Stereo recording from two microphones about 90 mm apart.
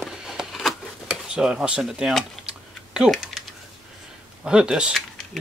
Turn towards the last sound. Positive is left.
turn(degrees=-10)  # may be behind; listen again after turning